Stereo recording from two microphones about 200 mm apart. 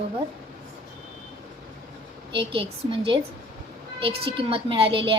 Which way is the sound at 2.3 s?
25° right (ahead or behind).